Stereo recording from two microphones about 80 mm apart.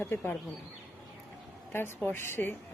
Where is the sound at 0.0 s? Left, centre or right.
Left.